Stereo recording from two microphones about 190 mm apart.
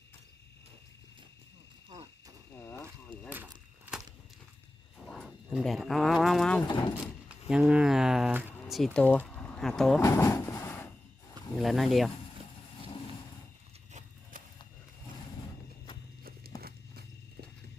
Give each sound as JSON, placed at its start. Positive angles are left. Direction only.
{"t": 1.9, "sound": "a sound", "side_deg": -20}
{"t": 2.6, "sound": "a sound", "side_deg": 10}
{"t": 5.0, "sound": "speech", "side_deg": 5}
{"t": 8.7, "sound": "speech", "side_deg": 5}
{"t": 10.0, "sound": "vehicle", "side_deg": 15}
{"t": 11.5, "sound": "speech", "side_deg": 0}
{"t": 16.6, "sound": "horse", "side_deg": -55}